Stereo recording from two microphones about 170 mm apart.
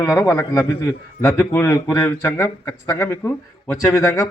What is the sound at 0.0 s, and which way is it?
A man's voice, 20° left (ahead or behind).